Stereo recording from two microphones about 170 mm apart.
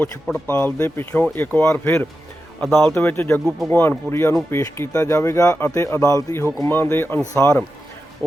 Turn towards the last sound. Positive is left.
turn(degrees=15)  # may be behind; listen again after turning